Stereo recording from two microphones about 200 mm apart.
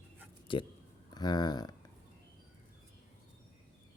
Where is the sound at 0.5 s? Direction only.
25° left (ahead or behind).